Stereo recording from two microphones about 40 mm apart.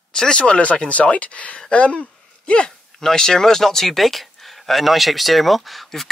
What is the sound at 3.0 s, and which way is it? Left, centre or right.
Speech, centre.